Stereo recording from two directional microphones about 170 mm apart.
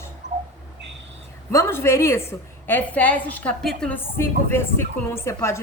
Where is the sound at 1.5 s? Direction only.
15° left (ahead or behind).